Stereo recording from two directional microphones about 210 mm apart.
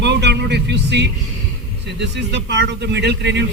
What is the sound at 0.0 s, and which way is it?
Music, 55° right (ahead or behind).